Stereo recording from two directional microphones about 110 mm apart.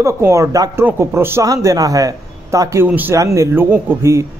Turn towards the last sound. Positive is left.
turn(degrees=-25)  # may be behind; listen again after turning